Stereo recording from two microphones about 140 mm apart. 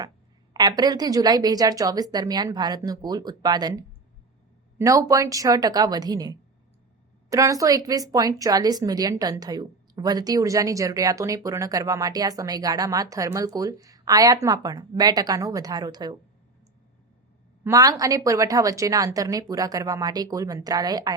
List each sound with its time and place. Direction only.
0.5 s speech: 30° right (ahead or behind)
17.6 s speech: 25° right (ahead or behind)